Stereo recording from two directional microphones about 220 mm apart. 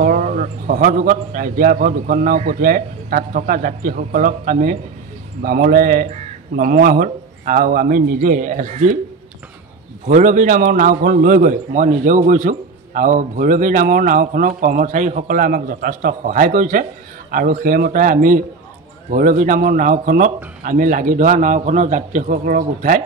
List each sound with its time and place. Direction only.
0.0 s a man's voice: 35° right (ahead or behind)
10.0 s a man's voice: 35° right (ahead or behind)